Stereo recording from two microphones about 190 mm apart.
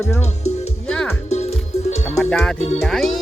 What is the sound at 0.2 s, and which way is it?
Music, 35° left (ahead or behind).